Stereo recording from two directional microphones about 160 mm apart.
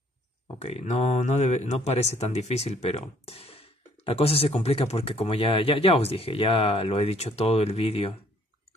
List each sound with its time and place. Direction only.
0.6 s speech: 40° left (ahead or behind)